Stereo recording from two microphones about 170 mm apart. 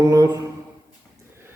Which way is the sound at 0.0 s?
20° right (ahead or behind).